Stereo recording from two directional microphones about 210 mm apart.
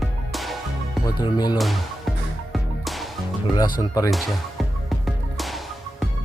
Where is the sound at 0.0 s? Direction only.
Centre (ahead or behind).